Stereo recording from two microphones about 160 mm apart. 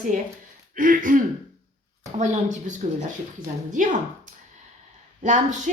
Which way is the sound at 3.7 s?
55° right (ahead or behind).